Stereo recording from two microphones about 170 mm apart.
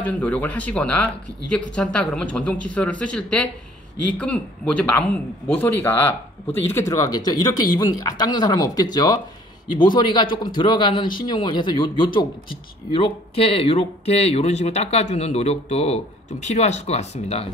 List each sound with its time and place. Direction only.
0.0 s speech: 10° left (ahead or behind); by 17.5 s 40° left (ahead or behind)